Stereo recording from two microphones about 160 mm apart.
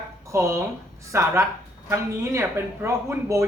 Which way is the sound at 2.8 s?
20° right (ahead or behind).